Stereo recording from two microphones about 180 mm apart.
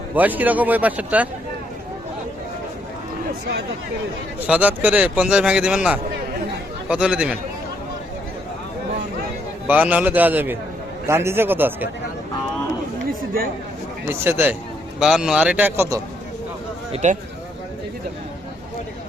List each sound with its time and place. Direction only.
0.1 s a man's voice: 10° right (ahead or behind)
4.4 s a man's voice: 5° right (ahead or behind)
9.6 s a man's voice: 10° right (ahead or behind)
14.1 s a man's voice: 10° right (ahead or behind)
16.9 s speech: 40° right (ahead or behind)